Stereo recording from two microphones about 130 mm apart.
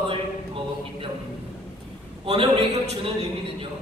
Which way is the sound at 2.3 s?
45° right (ahead or behind).